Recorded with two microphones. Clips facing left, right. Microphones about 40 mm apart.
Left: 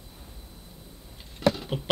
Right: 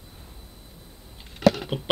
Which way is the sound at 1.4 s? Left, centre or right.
Right.